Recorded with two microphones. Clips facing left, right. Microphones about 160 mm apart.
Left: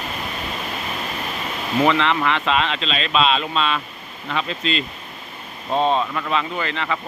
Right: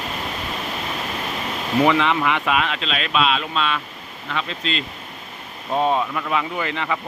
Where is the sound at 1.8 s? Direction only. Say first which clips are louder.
Even; 15° right (ahead or behind); by 4.8 s centre (ahead or behind).